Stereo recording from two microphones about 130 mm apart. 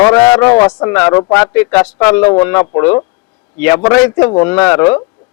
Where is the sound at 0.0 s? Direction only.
15° left (ahead or behind).